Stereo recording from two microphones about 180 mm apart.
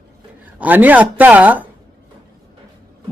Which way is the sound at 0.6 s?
10° right (ahead or behind).